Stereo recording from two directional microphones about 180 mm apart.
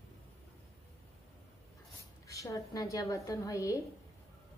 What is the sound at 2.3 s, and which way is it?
A woman's voice, 15° left (ahead or behind).